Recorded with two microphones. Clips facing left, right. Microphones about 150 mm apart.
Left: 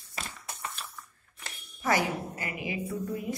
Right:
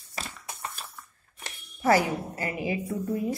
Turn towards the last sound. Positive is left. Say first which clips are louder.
# right 4 dB
turn(degrees=-35)  # may be behind; listen again after turning